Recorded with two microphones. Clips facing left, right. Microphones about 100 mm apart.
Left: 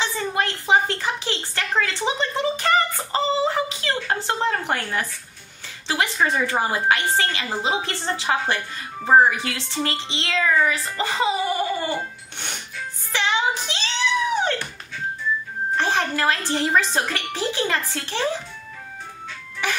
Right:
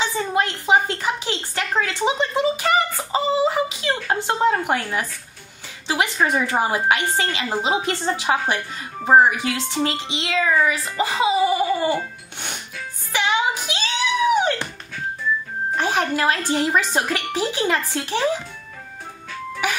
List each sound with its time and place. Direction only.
0.0 s a woman's voice: 15° right (ahead or behind)
13.1 s music: 10° right (ahead or behind)
15.7 s speech: 15° right (ahead or behind)